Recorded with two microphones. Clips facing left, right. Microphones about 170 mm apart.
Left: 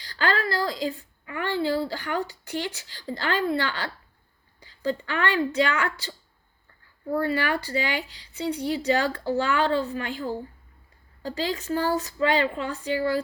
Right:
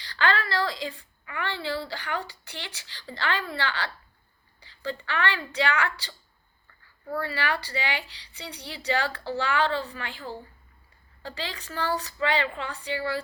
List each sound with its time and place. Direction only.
0.0 s a woman's voice: 40° left (ahead or behind)
7.2 s speech: 50° left (ahead or behind)